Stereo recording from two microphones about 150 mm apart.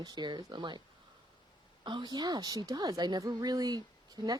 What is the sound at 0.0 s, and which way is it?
Speech, 30° right (ahead or behind).